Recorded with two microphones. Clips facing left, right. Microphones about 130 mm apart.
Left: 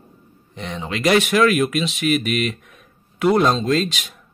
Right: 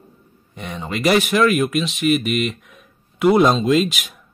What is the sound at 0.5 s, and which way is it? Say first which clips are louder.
Speech: even; 5° right (ahead or behind).